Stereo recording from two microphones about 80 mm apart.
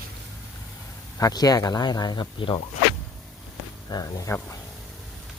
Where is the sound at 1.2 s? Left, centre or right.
Left.